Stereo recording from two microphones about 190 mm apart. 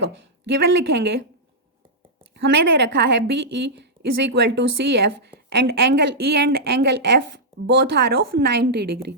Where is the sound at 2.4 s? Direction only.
65° right (ahead or behind).